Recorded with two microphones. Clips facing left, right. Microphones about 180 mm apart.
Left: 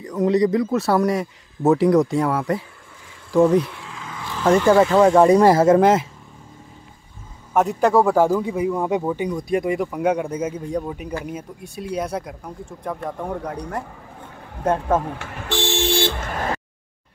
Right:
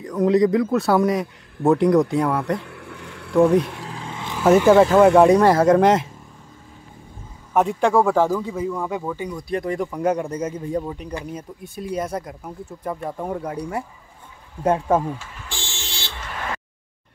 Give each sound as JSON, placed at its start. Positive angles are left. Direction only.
{"t": 0.0, "sound": "a man's voice", "side_deg": 0}
{"t": 2.6, "sound": "a sound", "side_deg": -70}
{"t": 3.3, "sound": "a man's voice", "side_deg": 0}
{"t": 3.8, "sound": "vehicle", "side_deg": -35}
{"t": 4.4, "sound": "a man's voice", "side_deg": -5}
{"t": 5.3, "sound": "a man's voice", "side_deg": 10}
{"t": 7.5, "sound": "a man's voice", "side_deg": 0}
{"t": 15.0, "sound": "toot", "side_deg": 65}